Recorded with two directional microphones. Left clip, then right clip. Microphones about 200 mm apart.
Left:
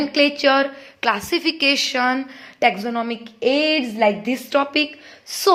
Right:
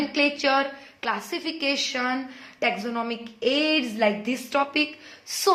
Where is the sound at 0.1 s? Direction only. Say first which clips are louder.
Left 6 dB; 40° left (ahead or behind).